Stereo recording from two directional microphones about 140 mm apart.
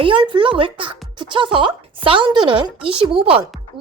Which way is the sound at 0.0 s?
35° right (ahead or behind).